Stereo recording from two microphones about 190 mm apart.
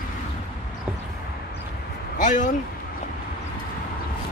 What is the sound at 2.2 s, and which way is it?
Speech, 40° left (ahead or behind).